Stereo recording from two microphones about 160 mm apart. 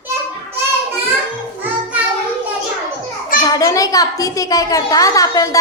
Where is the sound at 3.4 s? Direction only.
20° left (ahead or behind).